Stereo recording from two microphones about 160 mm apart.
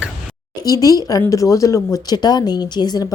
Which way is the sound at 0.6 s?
25° left (ahead or behind).